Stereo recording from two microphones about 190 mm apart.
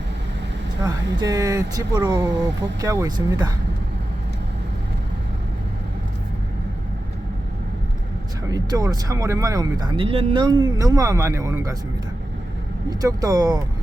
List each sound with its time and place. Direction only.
0.9 s speech: 20° right (ahead or behind)
8.4 s speech: 20° right (ahead or behind)
12.9 s speech: 20° right (ahead or behind)